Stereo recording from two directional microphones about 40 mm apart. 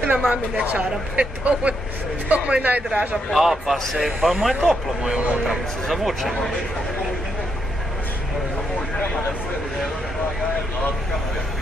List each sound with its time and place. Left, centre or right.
0.3 s speech: right
3.3 s a man's voice: centre
5.9 s speech: centre